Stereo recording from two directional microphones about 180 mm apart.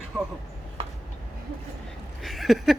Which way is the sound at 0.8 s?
30° right (ahead or behind).